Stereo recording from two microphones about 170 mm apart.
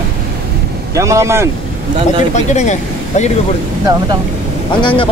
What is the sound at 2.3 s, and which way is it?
Speech, 45° left (ahead or behind).